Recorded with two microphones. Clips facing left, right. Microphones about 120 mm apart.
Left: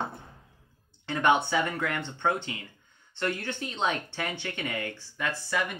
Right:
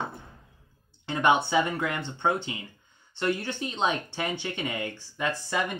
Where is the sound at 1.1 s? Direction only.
15° right (ahead or behind).